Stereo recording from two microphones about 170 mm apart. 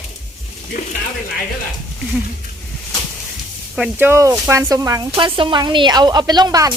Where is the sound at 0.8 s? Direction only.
50° left (ahead or behind).